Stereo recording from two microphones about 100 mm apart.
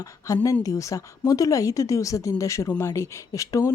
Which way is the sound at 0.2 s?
35° left (ahead or behind).